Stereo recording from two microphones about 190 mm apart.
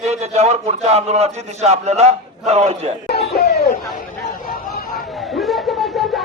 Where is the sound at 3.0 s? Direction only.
55° left (ahead or behind).